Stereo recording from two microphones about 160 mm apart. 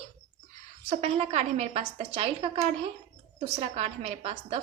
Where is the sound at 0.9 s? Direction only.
40° right (ahead or behind).